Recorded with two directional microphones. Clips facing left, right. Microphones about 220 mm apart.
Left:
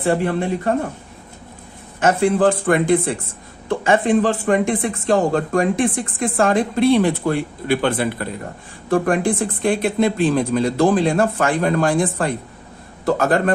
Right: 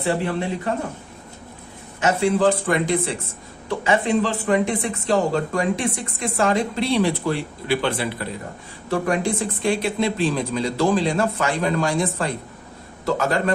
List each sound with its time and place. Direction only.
0.0 s speech: 50° left (ahead or behind)
2.0 s speech: 50° left (ahead or behind)